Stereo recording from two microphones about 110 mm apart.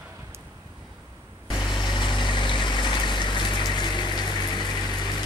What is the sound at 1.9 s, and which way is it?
Vehicle, 45° left (ahead or behind).